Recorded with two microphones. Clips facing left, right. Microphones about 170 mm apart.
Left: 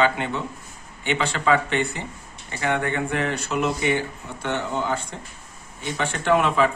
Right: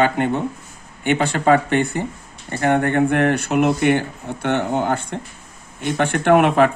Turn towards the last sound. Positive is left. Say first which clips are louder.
# right 6 dB
turn(degrees=-60)  # may be behind; listen again after turning